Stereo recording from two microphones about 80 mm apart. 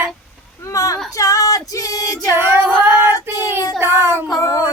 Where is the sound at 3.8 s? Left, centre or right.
Right.